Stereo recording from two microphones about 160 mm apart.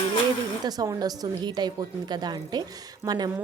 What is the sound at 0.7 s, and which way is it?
A woman's voice, 20° right (ahead or behind).